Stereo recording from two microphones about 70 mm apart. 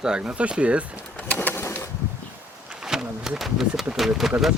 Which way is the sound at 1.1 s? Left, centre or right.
Left.